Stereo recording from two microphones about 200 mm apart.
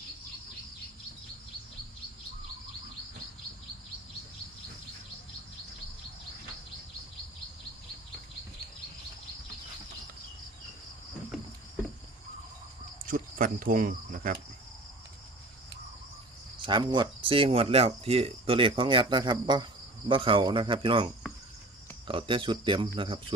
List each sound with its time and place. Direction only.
13.1 s speech: 45° right (ahead or behind)
16.6 s speech: 25° right (ahead or behind)